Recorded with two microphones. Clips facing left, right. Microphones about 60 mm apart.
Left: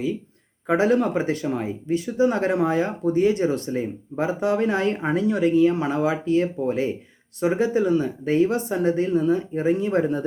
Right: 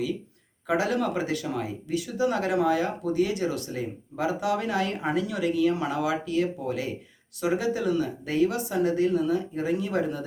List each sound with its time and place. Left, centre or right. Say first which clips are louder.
0.7 s speech: left 6 dB; left